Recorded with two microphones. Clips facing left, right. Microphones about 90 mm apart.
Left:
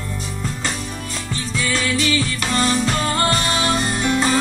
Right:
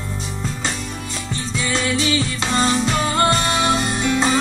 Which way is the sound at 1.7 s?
20° right (ahead or behind).